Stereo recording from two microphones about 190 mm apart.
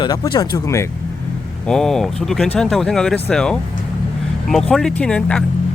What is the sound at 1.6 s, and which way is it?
Speech, centre (ahead or behind).